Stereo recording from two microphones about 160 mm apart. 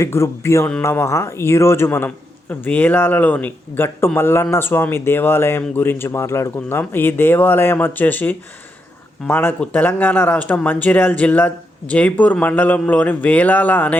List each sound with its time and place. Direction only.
0.0 s speech: 15° left (ahead or behind)